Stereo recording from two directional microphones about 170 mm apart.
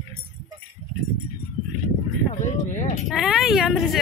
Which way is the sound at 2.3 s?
50° left (ahead or behind).